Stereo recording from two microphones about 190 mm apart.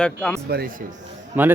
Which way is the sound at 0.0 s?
5° left (ahead or behind).